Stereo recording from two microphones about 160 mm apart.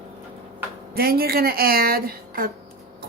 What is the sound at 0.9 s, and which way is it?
Speech, 75° right (ahead or behind).